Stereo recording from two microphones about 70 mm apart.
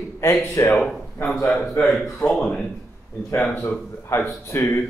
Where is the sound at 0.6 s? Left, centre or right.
Left.